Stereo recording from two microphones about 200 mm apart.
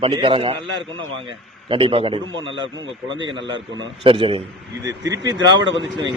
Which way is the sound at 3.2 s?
65° right (ahead or behind).